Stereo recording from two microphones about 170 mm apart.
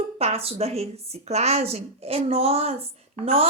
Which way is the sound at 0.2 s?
35° right (ahead or behind).